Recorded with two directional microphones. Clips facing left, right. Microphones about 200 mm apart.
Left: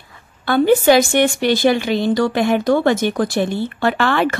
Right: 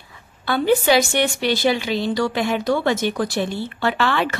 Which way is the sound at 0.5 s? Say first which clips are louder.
Left 5 dB; 50° left (ahead or behind).